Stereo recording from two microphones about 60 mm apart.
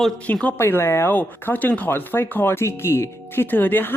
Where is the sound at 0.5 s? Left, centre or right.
Left.